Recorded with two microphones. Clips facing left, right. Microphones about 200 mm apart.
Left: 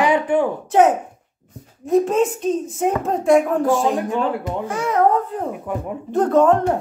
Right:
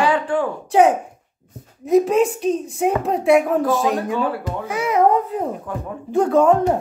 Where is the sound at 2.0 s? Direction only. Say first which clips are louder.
Right 1 dB; centre (ahead or behind).